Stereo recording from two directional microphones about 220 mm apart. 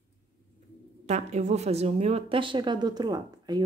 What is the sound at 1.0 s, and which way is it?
Speech, 30° right (ahead or behind).